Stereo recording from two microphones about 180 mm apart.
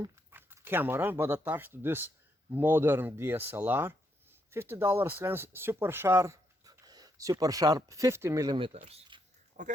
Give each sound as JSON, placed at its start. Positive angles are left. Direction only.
{"t": 0.0, "sound": "speech", "side_deg": -15}
{"t": 9.6, "sound": "speech", "side_deg": -45}